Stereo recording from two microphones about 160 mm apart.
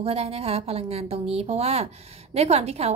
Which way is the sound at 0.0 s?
40° right (ahead or behind).